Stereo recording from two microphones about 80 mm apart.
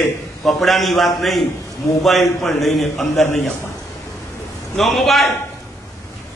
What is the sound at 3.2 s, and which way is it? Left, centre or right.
Speech, left.